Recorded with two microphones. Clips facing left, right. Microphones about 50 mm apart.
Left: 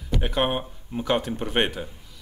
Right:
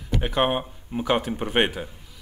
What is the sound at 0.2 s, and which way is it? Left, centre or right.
A man's voice, centre.